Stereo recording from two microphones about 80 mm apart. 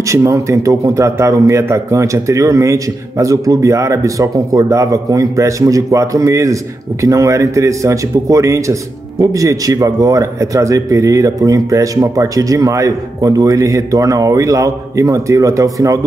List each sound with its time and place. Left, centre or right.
0.1 s a man's voice: right